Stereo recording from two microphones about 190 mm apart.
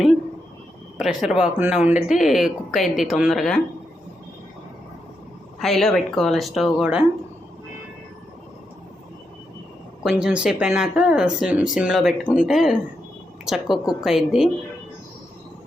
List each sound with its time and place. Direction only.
0.9 s speech: 5° right (ahead or behind)
5.5 s speech: centre (ahead or behind)
10.0 s speech: 5° right (ahead or behind)